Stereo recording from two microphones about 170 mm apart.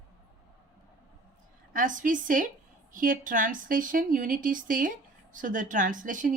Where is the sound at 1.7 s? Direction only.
50° right (ahead or behind).